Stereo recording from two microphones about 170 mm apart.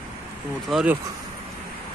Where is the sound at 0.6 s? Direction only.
Centre (ahead or behind).